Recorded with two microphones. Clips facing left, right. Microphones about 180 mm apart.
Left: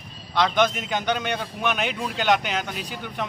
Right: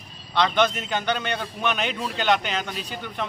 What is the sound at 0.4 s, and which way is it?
A man's voice, 10° left (ahead or behind).